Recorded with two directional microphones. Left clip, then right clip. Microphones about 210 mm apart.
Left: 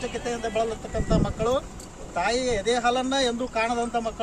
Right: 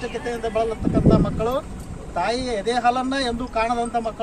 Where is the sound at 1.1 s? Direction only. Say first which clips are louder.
Left 1 dB; 25° left (ahead or behind).